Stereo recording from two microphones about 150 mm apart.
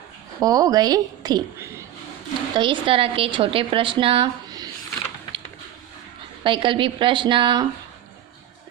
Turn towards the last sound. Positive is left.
turn(degrees=-35)  # may be behind; listen again after turning